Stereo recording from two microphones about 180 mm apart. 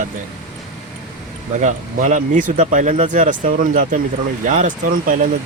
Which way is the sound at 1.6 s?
45° right (ahead or behind).